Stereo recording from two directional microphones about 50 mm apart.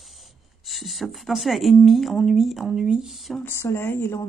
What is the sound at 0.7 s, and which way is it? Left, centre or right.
Speech, centre.